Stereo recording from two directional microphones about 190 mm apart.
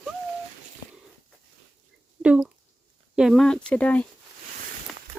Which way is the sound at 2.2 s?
5° right (ahead or behind).